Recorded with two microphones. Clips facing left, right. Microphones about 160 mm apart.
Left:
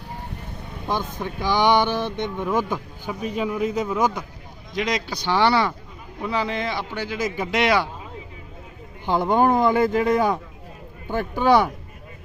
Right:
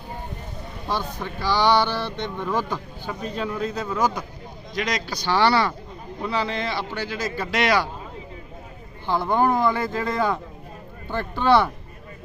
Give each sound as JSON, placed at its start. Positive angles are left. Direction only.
{"t": 1.2, "sound": "speech", "side_deg": 15}
{"t": 9.0, "sound": "speech", "side_deg": 15}